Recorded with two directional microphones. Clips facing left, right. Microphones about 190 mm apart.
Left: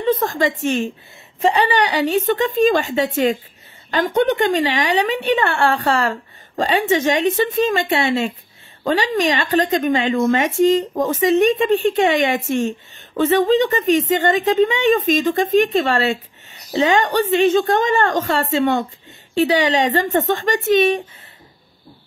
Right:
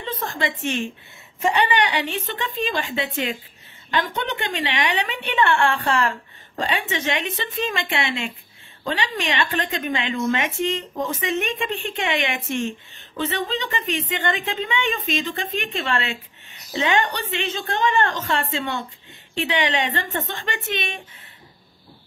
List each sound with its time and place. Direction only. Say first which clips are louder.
0.0 s a woman's voice: left 9 dB; 45° left (ahead or behind)